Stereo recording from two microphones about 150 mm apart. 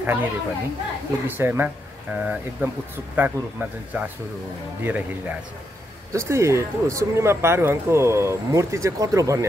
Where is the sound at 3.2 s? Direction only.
10° right (ahead or behind).